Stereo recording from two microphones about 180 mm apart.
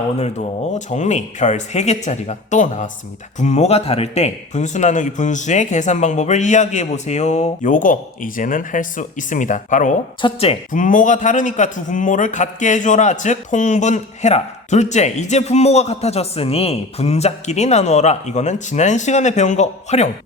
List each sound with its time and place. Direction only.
0.2 s a man's voice: 40° left (ahead or behind)
10.2 s speech: 30° left (ahead or behind)
10.7 s a man's voice: 45° left (ahead or behind)